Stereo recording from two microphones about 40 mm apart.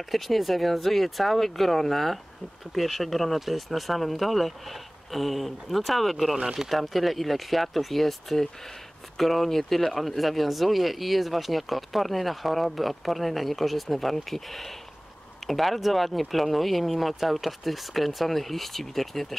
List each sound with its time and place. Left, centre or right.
0.1 s speech: centre
6.3 s speech: centre
6.7 s speech: centre